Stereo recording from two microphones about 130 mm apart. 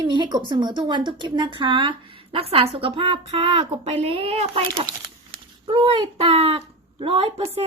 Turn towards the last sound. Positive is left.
turn(degrees=-50)  # may be behind; listen again after turning